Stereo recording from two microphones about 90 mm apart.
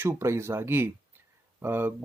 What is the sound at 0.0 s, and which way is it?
Speech, 30° right (ahead or behind).